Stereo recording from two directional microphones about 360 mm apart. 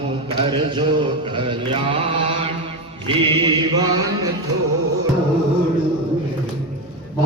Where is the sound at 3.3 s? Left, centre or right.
Centre.